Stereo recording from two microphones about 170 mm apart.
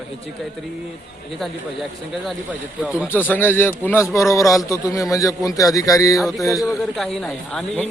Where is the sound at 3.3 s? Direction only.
10° left (ahead or behind).